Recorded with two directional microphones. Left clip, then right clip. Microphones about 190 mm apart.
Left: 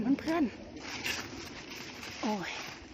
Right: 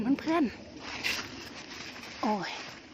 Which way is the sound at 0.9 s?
30° right (ahead or behind).